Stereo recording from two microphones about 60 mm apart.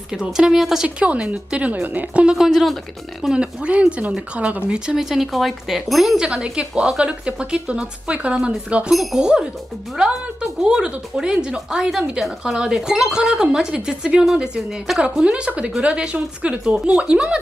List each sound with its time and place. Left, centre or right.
0.1 s a woman's voice: centre
0.8 s speech: centre
2.2 s a woman's voice: centre
3.6 s a woman's voice: centre
6.1 s a woman's voice: centre
8.9 s speech: centre
9.2 s a woman's voice: centre